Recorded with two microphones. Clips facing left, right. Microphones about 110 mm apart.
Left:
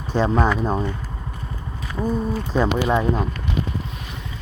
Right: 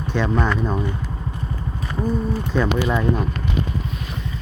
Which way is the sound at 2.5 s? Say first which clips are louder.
Left 1 dB; 30° left (ahead or behind).